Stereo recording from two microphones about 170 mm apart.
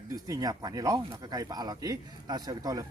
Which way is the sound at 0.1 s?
20° right (ahead or behind).